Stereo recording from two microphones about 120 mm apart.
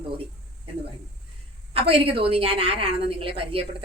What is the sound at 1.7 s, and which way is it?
A woman's voice, 50° right (ahead or behind).